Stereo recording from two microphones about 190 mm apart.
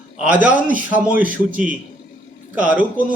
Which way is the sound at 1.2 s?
45° right (ahead or behind).